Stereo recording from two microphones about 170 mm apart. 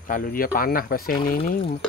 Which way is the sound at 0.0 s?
55° left (ahead or behind).